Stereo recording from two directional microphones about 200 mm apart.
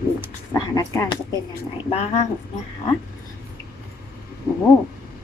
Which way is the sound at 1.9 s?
35° left (ahead or behind).